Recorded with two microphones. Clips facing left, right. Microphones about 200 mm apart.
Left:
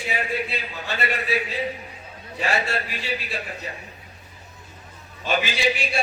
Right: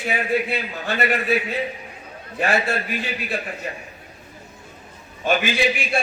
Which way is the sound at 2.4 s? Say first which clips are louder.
Right 4 dB; 55° right (ahead or behind).